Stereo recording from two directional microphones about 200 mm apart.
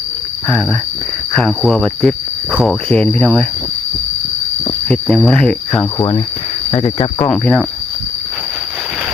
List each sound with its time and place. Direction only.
0.4 s speech: 5° left (ahead or behind)
1.4 s cricket: 5° left (ahead or behind)
4.9 s cricket: centre (ahead or behind)
6.7 s speech: 30° left (ahead or behind)
7.3 s speech: 5° left (ahead or behind)